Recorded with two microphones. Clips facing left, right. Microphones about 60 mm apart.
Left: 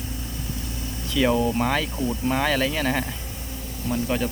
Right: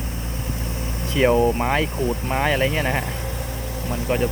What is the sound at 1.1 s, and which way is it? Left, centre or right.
Speech, right.